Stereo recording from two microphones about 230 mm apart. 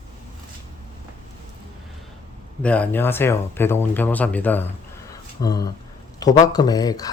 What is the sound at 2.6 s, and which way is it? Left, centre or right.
Speech, centre.